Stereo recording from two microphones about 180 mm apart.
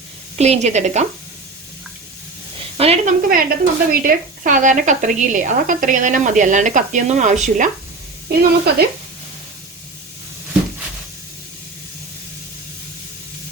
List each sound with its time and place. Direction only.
0.3 s a woman's voice: 35° right (ahead or behind)
2.7 s speech: 35° right (ahead or behind)
3.2 s speech: 50° right (ahead or behind)
8.3 s speech: 60° right (ahead or behind)